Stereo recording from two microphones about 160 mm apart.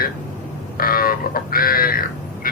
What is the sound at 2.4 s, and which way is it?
Quack, 65° left (ahead or behind).